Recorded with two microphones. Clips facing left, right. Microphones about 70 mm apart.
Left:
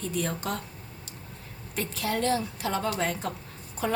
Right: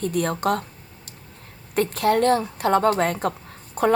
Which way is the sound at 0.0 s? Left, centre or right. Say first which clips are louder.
Right 8 dB; right.